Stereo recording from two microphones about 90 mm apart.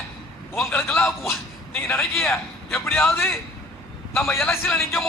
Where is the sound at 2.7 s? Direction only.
25° left (ahead or behind).